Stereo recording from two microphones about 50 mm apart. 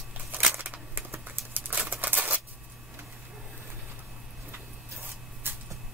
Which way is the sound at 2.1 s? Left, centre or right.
Right.